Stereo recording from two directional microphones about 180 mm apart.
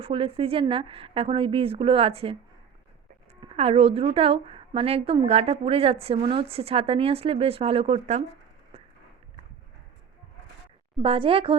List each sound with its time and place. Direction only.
0.0 s a woman's voice: 30° right (ahead or behind)
3.5 s a woman's voice: 35° right (ahead or behind)
11.0 s a woman's voice: 30° right (ahead or behind)